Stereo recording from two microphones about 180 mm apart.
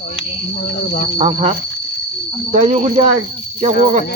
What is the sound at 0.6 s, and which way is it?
Speech, 45° left (ahead or behind).